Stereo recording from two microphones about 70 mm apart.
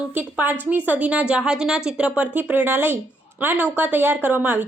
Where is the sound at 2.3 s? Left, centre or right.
Right.